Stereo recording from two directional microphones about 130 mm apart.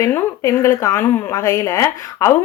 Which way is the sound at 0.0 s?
25° left (ahead or behind).